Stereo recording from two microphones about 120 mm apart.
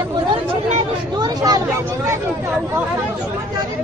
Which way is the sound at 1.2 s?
30° right (ahead or behind).